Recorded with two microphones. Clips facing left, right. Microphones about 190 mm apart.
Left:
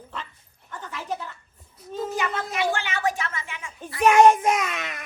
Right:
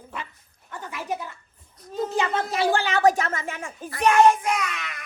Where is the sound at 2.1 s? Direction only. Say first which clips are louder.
Right 4 dB; 30° right (ahead or behind); by 3.7 s 45° right (ahead or behind).